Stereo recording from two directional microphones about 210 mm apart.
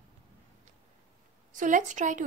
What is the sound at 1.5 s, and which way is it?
Speech, 40° right (ahead or behind).